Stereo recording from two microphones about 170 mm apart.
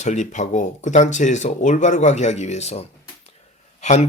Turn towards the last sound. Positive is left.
turn(degrees=45)  # may be behind; listen again after turning